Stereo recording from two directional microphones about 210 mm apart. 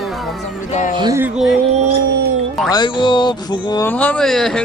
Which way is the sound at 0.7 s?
35° left (ahead or behind).